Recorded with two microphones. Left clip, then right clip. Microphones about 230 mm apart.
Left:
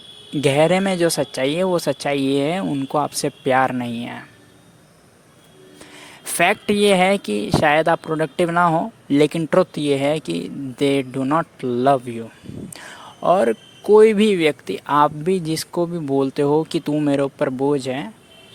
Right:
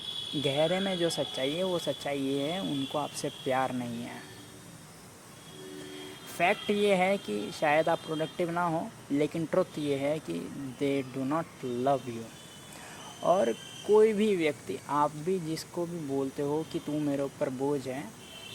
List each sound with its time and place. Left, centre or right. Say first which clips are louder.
0.4 s speech: left 12 dB; left
6.3 s speech: left 10 dB; left
13.2 s speech: left 10 dB; left